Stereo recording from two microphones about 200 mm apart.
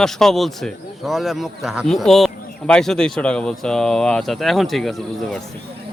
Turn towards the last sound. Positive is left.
turn(degrees=0)  # may be behind; listen again after turning